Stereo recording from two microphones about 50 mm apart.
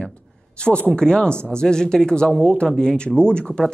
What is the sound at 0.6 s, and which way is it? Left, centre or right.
Speech, centre.